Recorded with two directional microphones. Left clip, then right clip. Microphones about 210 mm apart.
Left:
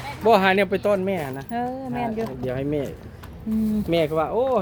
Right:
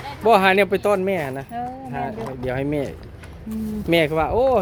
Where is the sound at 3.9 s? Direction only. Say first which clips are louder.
Right 4 dB; 45° right (ahead or behind).